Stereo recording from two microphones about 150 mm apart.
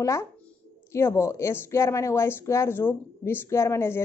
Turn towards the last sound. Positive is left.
turn(degrees=15)  # may be behind; listen again after turning